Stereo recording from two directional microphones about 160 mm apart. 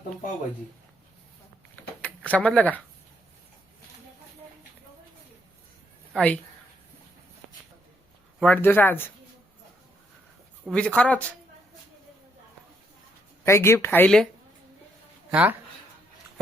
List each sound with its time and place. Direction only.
2.0 s speech: 10° left (ahead or behind)
6.1 s speech: 10° left (ahead or behind)
8.4 s speech: 10° left (ahead or behind)
10.7 s speech: 5° left (ahead or behind)
13.4 s speech: 15° left (ahead or behind)
15.3 s speech: 10° right (ahead or behind)